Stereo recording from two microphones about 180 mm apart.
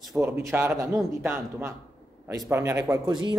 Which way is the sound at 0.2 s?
10° right (ahead or behind).